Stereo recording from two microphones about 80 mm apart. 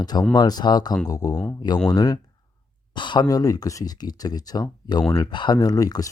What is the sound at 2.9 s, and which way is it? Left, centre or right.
Speech, left.